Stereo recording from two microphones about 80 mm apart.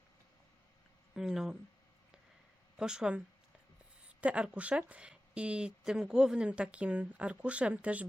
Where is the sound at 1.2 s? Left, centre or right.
Centre.